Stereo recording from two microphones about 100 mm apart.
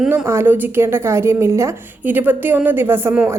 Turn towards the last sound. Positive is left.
turn(degrees=-25)  # may be behind; listen again after turning